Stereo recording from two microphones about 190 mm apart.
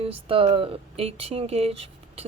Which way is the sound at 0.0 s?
30° right (ahead or behind).